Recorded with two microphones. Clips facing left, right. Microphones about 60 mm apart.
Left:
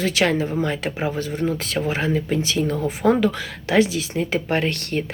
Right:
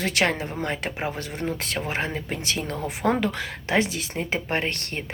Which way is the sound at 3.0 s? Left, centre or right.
Right.